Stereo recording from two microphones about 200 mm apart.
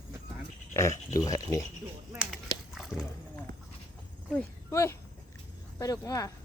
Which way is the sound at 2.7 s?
Centre (ahead or behind).